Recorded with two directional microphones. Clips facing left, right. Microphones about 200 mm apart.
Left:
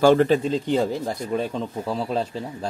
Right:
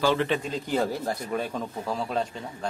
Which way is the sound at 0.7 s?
25° left (ahead or behind).